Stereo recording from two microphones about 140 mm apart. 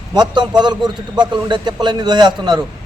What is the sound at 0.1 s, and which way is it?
A man's voice, 30° right (ahead or behind).